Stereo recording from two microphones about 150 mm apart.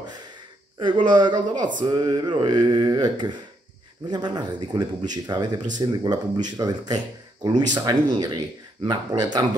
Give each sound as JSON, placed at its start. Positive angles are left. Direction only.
{"t": 0.7, "sound": "speech", "side_deg": -35}